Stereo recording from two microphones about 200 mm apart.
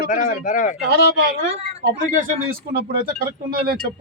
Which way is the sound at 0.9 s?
45° right (ahead or behind).